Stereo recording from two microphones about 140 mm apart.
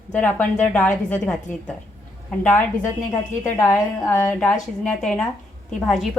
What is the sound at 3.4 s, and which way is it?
A woman's voice, 15° left (ahead or behind).